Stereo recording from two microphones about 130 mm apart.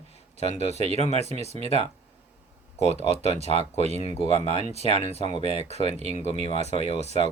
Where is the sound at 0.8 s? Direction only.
55° right (ahead or behind).